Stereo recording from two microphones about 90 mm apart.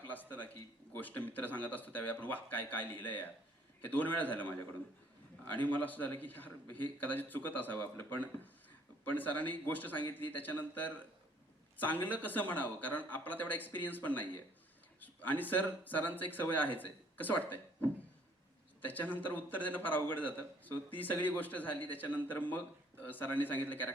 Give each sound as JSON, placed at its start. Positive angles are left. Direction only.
{"t": 0.1, "sound": "a man's voice", "side_deg": 20}
{"t": 5.5, "sound": "a man's voice", "side_deg": 20}